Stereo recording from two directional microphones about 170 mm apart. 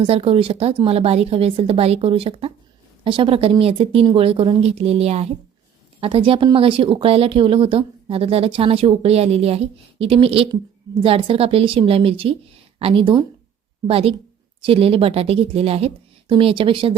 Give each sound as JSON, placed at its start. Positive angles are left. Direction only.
{"t": 0.0, "sound": "speech", "side_deg": -35}